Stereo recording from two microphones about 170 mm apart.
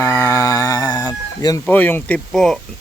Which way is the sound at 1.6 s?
10° left (ahead or behind).